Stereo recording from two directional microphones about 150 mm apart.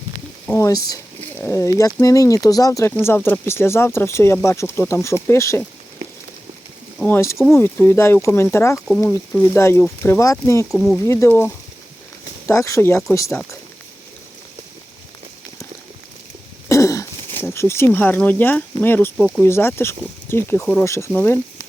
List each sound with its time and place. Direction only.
0.4 s speech: 15° left (ahead or behind)
7.0 s speech: 10° left (ahead or behind)
10.7 s speech: centre (ahead or behind)
11.0 s speech: 20° left (ahead or behind)
16.6 s throat clearing: 20° left (ahead or behind)
17.4 s speech: 15° left (ahead or behind)